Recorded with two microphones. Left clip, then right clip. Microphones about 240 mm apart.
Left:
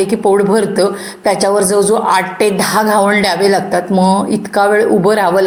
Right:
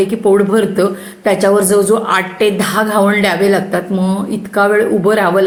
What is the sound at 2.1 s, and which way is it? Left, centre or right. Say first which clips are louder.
A woman's voice: left 1 dB; centre.